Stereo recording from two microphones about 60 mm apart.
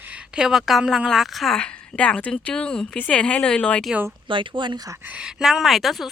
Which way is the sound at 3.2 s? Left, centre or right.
Centre.